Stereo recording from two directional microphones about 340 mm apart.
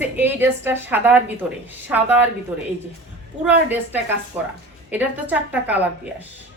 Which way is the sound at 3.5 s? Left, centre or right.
Centre.